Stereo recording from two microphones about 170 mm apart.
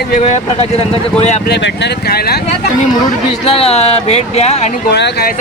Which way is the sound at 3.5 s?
35° left (ahead or behind).